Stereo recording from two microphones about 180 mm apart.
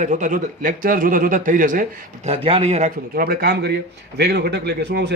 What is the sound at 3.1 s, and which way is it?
A man's voice, 55° right (ahead or behind).